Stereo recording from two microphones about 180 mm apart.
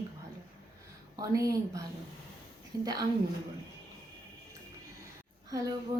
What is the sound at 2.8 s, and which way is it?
Speech, 20° right (ahead or behind).